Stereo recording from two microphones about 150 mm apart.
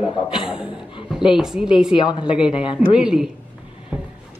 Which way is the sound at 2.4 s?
35° left (ahead or behind).